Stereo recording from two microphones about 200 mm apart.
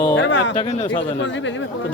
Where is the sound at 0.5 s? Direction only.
25° left (ahead or behind).